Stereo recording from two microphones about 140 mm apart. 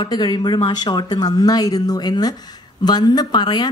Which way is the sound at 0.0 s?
30° left (ahead or behind).